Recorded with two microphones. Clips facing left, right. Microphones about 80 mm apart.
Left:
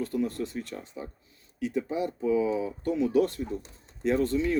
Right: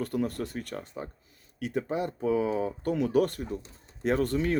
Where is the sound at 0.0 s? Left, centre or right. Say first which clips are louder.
Left 1 dB; right.